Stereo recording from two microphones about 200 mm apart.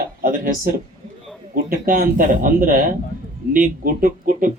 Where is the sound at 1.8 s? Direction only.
45° right (ahead or behind).